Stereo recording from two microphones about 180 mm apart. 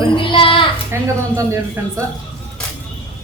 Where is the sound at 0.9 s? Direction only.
15° right (ahead or behind).